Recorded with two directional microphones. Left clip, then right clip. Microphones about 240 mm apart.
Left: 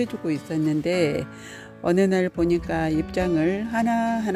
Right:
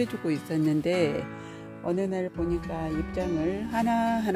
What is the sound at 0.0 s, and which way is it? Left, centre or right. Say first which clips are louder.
Speech: left 2 dB; centre.